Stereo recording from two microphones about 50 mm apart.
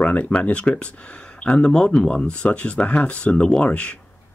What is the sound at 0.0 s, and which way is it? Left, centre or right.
Speech, left.